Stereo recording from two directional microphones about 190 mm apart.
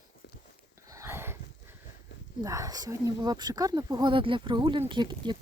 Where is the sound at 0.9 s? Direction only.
15° right (ahead or behind).